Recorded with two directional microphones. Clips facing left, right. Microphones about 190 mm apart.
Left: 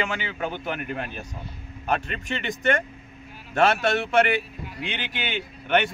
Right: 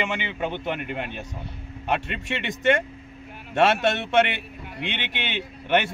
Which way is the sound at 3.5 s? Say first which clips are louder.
Right 1 dB; 25° right (ahead or behind).